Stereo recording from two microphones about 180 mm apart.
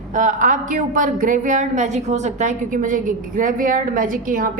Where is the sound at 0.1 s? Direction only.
45° right (ahead or behind).